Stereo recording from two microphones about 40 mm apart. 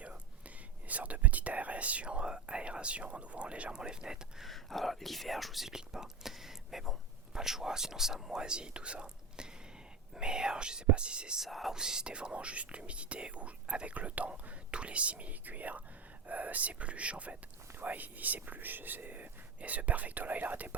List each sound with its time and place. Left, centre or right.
0.0 s whispering: right
3.8 s speech: centre
4.4 s speech: centre
5.7 s speech: centre
8.4 s speech: right
11.3 s speech: centre
11.7 s speech: centre
12.1 s speech: right
17.8 s speech: right